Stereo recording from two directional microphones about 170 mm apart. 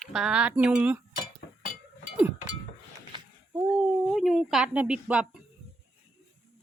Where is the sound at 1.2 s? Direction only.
50° left (ahead or behind).